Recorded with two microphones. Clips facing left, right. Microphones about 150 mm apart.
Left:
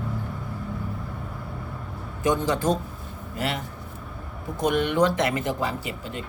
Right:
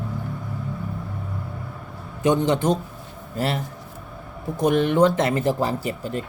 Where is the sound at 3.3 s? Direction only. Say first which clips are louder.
Right 4 dB; 35° right (ahead or behind).